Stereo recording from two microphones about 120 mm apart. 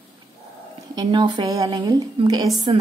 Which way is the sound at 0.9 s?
40° right (ahead or behind).